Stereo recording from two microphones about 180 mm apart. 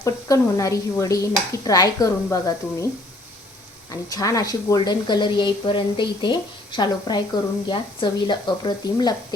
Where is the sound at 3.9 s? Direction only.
20° left (ahead or behind).